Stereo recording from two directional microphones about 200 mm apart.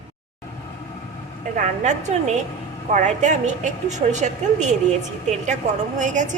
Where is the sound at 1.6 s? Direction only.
35° right (ahead or behind).